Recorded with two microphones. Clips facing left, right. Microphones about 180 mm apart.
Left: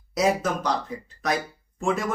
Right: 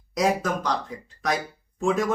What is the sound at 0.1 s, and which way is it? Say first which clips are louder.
Speech: left 1 dB; 5° left (ahead or behind).